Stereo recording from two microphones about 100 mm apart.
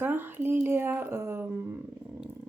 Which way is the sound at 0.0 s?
20° right (ahead or behind).